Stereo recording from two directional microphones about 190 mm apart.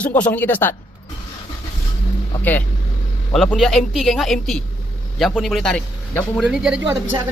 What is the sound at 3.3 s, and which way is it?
Speech, centre (ahead or behind).